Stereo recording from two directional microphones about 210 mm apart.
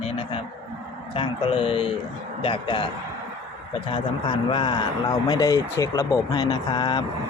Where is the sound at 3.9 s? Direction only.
25° left (ahead or behind).